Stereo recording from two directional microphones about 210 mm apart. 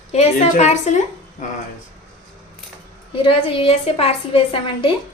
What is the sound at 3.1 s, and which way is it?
A woman's voice, 25° left (ahead or behind).